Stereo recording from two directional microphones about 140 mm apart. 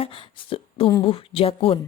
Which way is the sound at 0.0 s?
40° left (ahead or behind).